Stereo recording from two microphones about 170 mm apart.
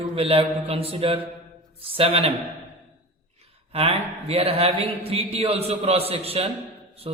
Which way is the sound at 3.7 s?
35° right (ahead or behind).